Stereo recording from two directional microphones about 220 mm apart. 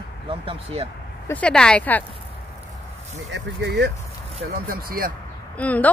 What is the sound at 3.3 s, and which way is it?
Speech, 50° right (ahead or behind).